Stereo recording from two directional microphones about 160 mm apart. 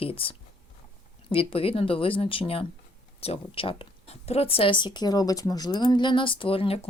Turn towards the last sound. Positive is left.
turn(degrees=35)  # may be behind; listen again after turning